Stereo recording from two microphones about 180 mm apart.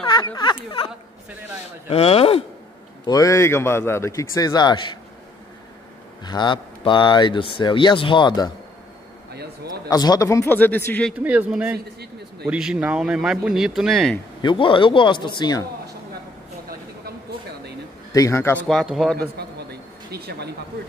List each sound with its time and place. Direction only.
0.0 s speech: 25° left (ahead or behind)
3.1 s speech: 20° left (ahead or behind)
6.2 s speech: 25° left (ahead or behind)
9.3 s a sound: 60° right (ahead or behind)
9.8 s speech: 20° left (ahead or behind)
11.2 s a man's voice: 10° right (ahead or behind)
14.4 s speech: 25° left (ahead or behind)
18.1 s speech: 15° left (ahead or behind); by 19.1 s centre (ahead or behind)
19.3 s a sound: 65° right (ahead or behind)